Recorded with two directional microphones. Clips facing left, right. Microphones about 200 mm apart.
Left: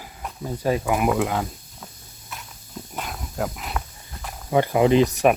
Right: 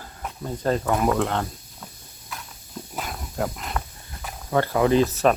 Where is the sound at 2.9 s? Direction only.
Centre (ahead or behind).